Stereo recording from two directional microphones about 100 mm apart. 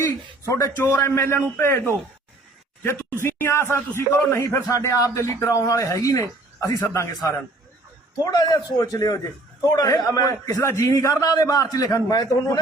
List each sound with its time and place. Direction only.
0.0 s speech: 30° left (ahead or behind)
2.8 s speech: 25° left (ahead or behind)
8.2 s speech: 40° left (ahead or behind)